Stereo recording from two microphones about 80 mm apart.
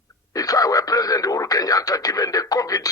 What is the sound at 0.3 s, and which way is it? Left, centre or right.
Speech, left.